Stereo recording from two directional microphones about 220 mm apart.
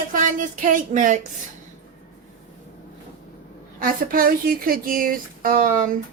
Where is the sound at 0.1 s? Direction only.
35° right (ahead or behind).